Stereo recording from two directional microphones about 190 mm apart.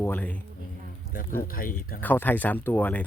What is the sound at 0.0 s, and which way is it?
Speech, 10° left (ahead or behind).